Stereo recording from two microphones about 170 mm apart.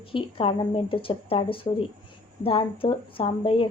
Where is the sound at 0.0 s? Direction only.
30° left (ahead or behind).